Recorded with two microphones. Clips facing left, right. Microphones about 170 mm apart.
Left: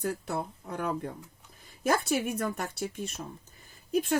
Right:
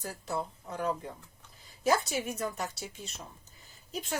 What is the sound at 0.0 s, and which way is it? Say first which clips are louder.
A woman's voice: left 4 dB; 60° left (ahead or behind).